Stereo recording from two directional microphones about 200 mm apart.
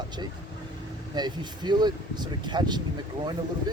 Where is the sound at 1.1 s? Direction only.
20° right (ahead or behind).